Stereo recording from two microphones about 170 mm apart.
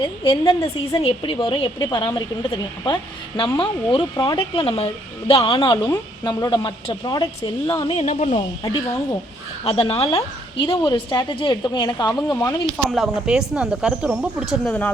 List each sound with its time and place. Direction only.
0.0 s a woman's voice: 30° left (ahead or behind)
8.0 s speech: 40° left (ahead or behind)
8.6 s a woman's voice: 20° left (ahead or behind)
9.6 s a woman's voice: 35° left (ahead or behind)
12.7 s speech: centre (ahead or behind)
14.7 s speech: 10° left (ahead or behind)